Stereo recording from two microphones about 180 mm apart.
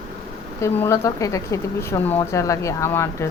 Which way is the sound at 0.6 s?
15° left (ahead or behind).